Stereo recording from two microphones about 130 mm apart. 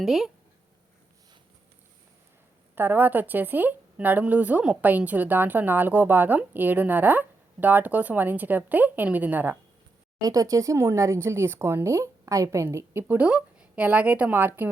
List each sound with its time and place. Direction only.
0.0 s speech: centre (ahead or behind)
2.7 s a woman's voice: 15° right (ahead or behind)
10.2 s speech: 25° right (ahead or behind)